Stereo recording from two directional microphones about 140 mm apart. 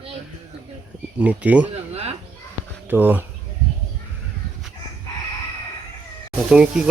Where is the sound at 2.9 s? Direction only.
15° right (ahead or behind).